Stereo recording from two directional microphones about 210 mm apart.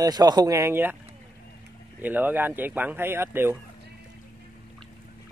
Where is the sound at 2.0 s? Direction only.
10° right (ahead or behind).